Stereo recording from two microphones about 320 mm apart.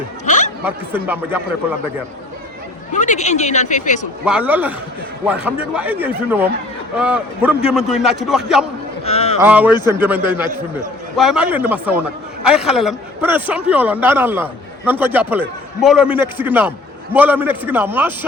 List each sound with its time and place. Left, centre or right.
0.3 s a sound: left
0.6 s a man's voice: centre
2.9 s speech: left
4.3 s a man's voice: centre
9.0 s a sound: centre
9.4 s a man's voice: centre